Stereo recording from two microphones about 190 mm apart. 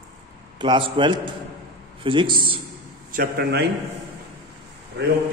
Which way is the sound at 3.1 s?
50° right (ahead or behind).